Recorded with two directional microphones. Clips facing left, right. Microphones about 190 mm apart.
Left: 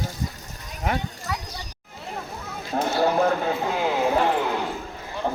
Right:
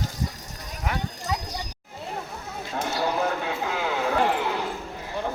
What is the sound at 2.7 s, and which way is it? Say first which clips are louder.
Speech: left 5 dB; 40° left (ahead or behind).